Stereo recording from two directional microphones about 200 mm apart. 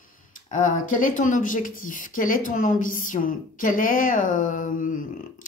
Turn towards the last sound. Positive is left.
turn(degrees=40)  # may be behind; listen again after turning